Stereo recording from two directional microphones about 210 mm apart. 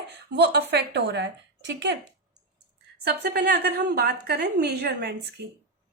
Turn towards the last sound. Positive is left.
turn(degrees=-50)  # may be behind; listen again after turning